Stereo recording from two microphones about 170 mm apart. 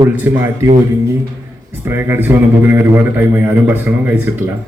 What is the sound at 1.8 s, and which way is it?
A man's voice, 15° right (ahead or behind).